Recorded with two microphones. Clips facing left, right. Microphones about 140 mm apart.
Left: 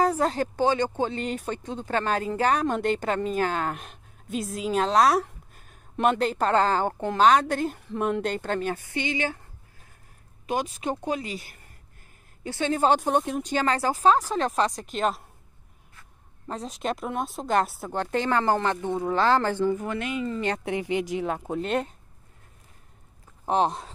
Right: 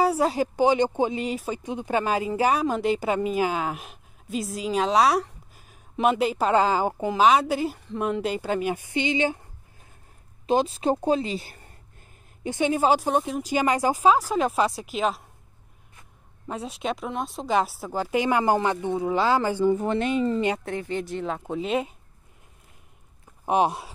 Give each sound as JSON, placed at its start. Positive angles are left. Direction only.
{"t": 0.0, "sound": "speech", "side_deg": -10}
{"t": 10.4, "sound": "a woman's voice", "side_deg": -30}
{"t": 12.4, "sound": "speech", "side_deg": -15}
{"t": 16.4, "sound": "speech", "side_deg": -5}
{"t": 19.7, "sound": "a woman's voice", "side_deg": -30}
{"t": 20.6, "sound": "speech", "side_deg": 15}
{"t": 23.4, "sound": "speech", "side_deg": -10}